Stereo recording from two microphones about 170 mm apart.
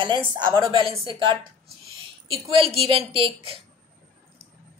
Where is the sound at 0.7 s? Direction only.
30° right (ahead or behind).